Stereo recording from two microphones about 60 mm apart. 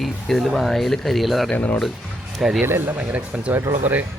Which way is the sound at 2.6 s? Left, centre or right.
Right.